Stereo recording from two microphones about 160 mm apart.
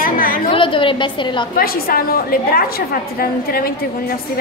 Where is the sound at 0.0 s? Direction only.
60° left (ahead or behind).